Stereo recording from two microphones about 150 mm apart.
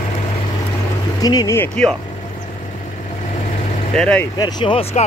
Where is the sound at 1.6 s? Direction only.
10° left (ahead or behind).